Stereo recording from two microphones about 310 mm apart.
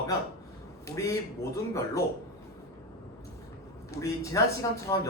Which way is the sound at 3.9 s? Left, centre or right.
Centre.